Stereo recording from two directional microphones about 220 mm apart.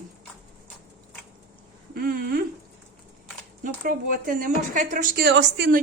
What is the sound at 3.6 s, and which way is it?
Speech, 40° right (ahead or behind).